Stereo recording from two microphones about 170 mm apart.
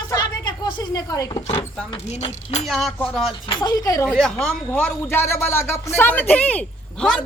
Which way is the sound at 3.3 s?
25° left (ahead or behind).